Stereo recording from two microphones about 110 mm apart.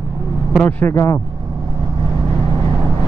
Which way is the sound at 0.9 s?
30° left (ahead or behind).